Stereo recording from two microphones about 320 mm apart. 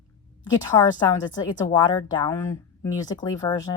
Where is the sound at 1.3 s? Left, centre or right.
Centre.